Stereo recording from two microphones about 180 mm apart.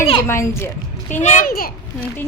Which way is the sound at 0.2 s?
15° left (ahead or behind).